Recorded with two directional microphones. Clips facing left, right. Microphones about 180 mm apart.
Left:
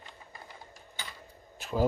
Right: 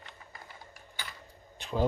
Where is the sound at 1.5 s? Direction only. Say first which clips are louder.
Left 1 dB; 5° left (ahead or behind).